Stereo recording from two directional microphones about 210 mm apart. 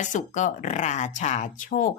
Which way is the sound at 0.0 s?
35° left (ahead or behind).